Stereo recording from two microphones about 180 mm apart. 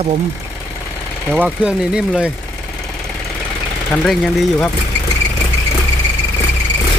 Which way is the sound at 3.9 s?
5° left (ahead or behind).